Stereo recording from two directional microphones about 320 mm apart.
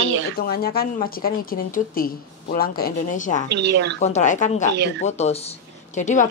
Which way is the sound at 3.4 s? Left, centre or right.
Right.